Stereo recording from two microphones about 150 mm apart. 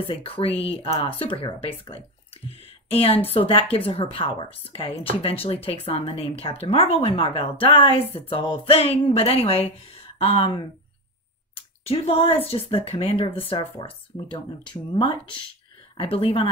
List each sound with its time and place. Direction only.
0.1 s a woman's voice: 40° left (ahead or behind)
11.5 s a sound: 40° left (ahead or behind)
12.4 s a woman's voice: 40° left (ahead or behind)